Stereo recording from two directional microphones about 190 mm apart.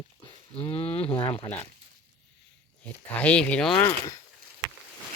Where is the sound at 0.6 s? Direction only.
30° left (ahead or behind).